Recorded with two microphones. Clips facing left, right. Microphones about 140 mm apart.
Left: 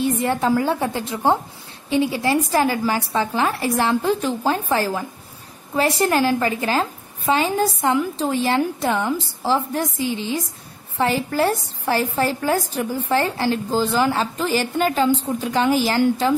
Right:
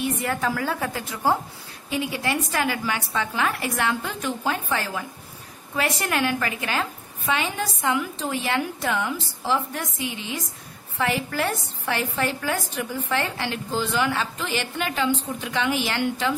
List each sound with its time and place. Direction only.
0.0 s a woman's voice: 30° left (ahead or behind)